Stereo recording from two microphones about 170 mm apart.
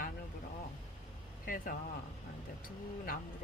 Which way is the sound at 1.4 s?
55° left (ahead or behind).